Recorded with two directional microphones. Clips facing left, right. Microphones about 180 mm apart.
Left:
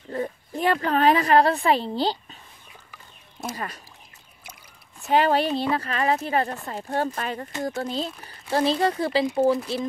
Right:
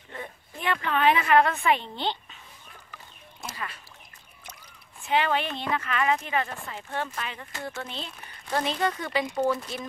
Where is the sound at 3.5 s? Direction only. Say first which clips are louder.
Left 4 dB; 40° left (ahead or behind).